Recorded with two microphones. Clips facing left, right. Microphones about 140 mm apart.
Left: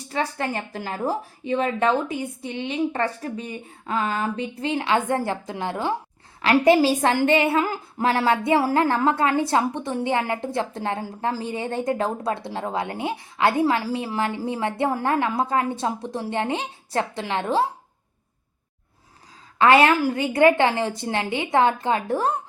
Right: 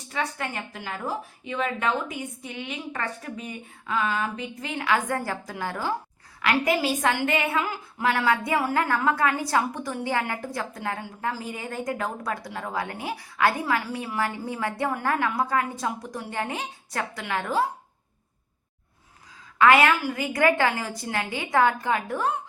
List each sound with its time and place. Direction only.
0.1 s a woman's voice: 35° left (ahead or behind)
6.7 s a woman's voice: 35° left (ahead or behind)
19.5 s a woman's voice: 30° left (ahead or behind)